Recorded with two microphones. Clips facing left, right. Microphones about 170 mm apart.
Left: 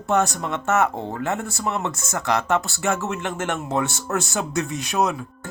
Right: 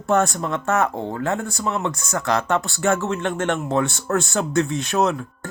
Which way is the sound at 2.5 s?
Centre (ahead or behind).